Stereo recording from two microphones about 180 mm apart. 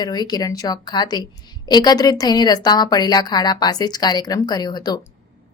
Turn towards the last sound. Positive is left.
turn(degrees=20)  # may be behind; listen again after turning